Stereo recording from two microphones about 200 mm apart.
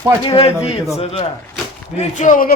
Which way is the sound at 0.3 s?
30° left (ahead or behind).